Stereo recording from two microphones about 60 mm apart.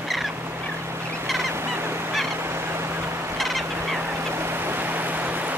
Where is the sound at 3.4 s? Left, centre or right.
Centre.